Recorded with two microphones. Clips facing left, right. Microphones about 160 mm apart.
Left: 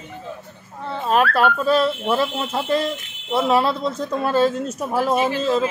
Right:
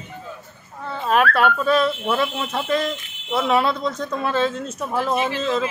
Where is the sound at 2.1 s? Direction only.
25° left (ahead or behind).